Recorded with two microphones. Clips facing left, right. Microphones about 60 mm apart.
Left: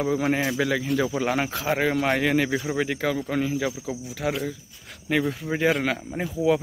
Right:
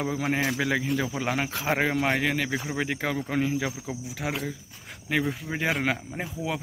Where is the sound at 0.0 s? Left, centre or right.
Centre.